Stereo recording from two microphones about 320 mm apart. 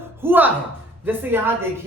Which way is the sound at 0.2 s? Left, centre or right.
Centre.